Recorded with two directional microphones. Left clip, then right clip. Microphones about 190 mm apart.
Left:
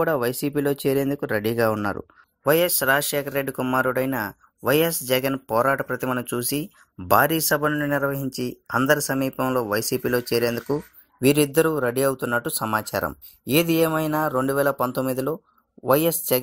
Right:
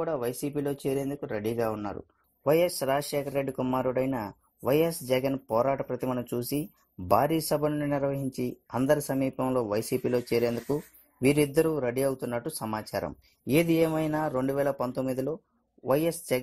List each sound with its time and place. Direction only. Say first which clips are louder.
0.0 s speech: left 8 dB; 25° left (ahead or behind)
2.4 s speech: left 5 dB; 5° left (ahead or behind)